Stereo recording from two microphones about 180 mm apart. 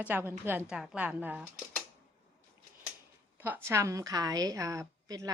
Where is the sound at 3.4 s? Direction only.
15° right (ahead or behind).